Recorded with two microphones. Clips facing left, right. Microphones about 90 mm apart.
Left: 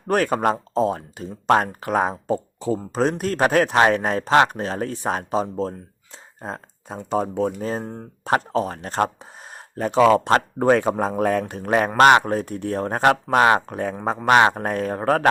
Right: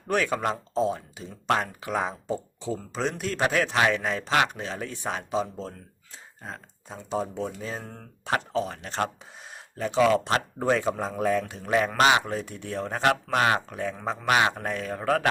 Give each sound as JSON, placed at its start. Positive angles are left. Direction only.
{"t": 0.1, "sound": "speech", "side_deg": 45}